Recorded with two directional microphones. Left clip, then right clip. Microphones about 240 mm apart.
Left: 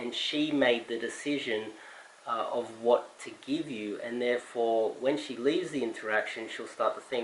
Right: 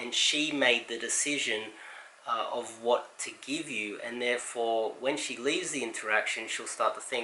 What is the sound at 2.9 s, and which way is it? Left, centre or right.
Speech, centre.